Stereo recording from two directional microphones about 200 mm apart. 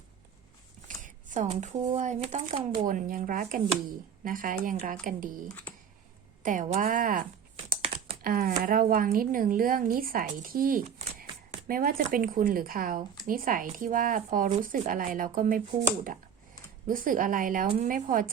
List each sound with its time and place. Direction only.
0.9 s shuffling cards: 40° right (ahead or behind)
2.0 s speech: 35° right (ahead or behind)
6.4 s speech: 40° right (ahead or behind)
16.9 s speech: 40° right (ahead or behind)